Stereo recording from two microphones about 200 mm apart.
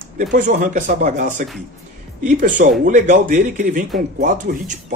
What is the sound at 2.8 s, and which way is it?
Speech, 40° right (ahead or behind).